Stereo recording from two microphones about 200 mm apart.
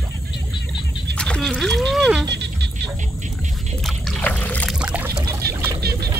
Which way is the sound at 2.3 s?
60° right (ahead or behind).